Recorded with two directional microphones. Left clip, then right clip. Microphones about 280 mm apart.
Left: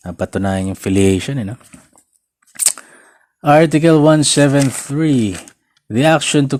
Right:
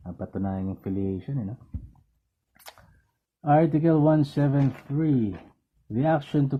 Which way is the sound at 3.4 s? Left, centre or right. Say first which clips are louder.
Left 11 dB; left.